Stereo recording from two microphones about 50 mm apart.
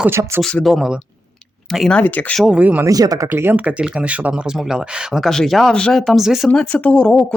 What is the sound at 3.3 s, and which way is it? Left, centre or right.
Speech, right.